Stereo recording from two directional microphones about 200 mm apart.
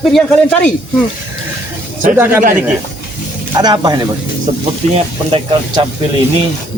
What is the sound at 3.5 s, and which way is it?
Speech, 20° right (ahead or behind).